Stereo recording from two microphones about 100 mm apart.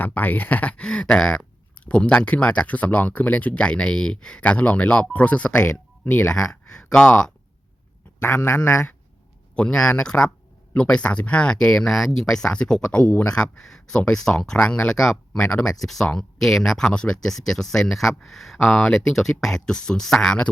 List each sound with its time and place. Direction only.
0.0 s speech: 15° left (ahead or behind)
6.5 s speech: 5° left (ahead or behind)
8.2 s a man's voice: 25° left (ahead or behind)
9.6 s speech: 10° left (ahead or behind)